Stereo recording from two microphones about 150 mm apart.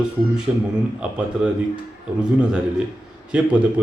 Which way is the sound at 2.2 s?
5° right (ahead or behind).